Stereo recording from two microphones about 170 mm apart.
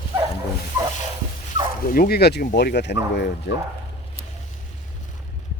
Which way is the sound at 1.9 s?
60° left (ahead or behind).